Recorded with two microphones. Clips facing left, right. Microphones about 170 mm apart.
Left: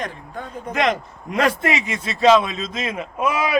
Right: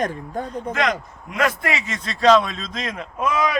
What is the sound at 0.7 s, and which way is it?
A man's voice, 20° left (ahead or behind).